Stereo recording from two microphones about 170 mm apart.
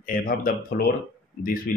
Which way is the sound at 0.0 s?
55° left (ahead or behind).